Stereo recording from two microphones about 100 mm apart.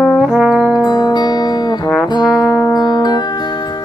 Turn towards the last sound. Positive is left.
turn(degrees=45)  # may be behind; listen again after turning